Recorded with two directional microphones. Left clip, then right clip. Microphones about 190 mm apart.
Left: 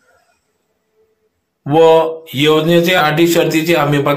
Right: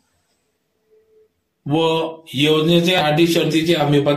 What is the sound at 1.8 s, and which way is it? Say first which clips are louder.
Speech: left 10 dB; 5° left (ahead or behind).